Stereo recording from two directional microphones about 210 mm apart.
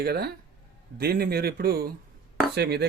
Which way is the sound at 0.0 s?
50° right (ahead or behind).